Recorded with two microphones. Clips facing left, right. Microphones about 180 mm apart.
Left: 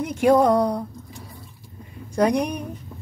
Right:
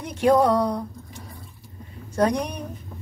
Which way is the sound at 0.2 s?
10° left (ahead or behind).